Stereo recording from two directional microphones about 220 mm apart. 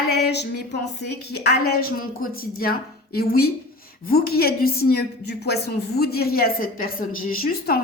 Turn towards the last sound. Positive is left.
turn(degrees=45)  # may be behind; listen again after turning